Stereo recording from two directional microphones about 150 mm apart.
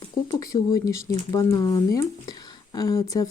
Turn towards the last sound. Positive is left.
turn(degrees=25)  # may be behind; listen again after turning